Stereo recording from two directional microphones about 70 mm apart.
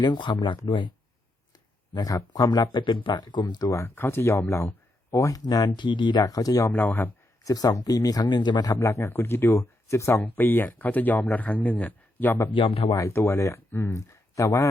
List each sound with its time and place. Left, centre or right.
0.0 s speech: left
1.9 s speech: left
3.7 s speech: left
5.5 s speech: left
6.7 s speech: left
7.4 s speech: left
8.7 s speech: left
10.2 s speech: left
12.9 s speech: left